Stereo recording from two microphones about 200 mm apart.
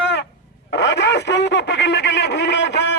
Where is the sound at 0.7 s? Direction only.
60° left (ahead or behind).